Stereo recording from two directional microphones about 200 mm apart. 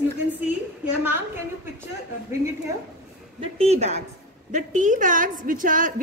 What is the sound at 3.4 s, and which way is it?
A woman's voice, 30° right (ahead or behind).